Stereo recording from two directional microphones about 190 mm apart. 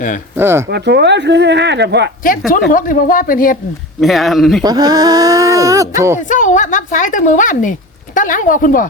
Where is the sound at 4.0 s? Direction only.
Centre (ahead or behind).